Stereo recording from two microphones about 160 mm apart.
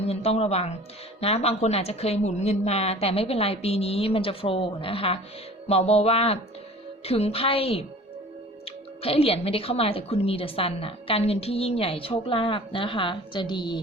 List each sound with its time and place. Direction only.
0.0 s a woman's voice: 40° left (ahead or behind)
9.0 s a woman's voice: 35° left (ahead or behind)